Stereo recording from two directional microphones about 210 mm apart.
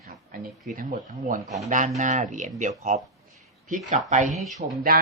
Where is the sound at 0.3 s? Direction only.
40° right (ahead or behind).